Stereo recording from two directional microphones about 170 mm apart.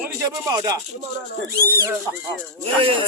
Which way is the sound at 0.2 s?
20° right (ahead or behind).